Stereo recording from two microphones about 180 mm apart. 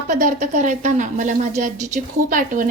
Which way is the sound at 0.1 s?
45° right (ahead or behind).